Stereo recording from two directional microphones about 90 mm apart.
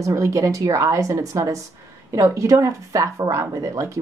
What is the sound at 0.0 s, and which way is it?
Speech, 35° right (ahead or behind).